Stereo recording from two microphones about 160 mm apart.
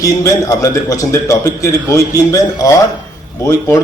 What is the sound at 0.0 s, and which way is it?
A man's voice, 20° left (ahead or behind).